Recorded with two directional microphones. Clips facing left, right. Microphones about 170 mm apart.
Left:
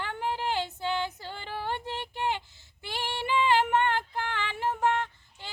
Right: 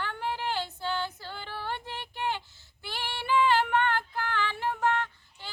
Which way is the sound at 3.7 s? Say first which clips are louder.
Left 1 dB; 15° left (ahead or behind).